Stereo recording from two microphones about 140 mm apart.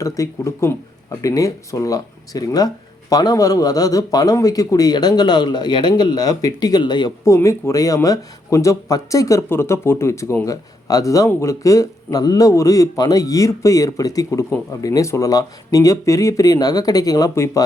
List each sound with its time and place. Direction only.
0.0 s a man's voice: 25° left (ahead or behind)
7.3 s a man's voice: 20° left (ahead or behind)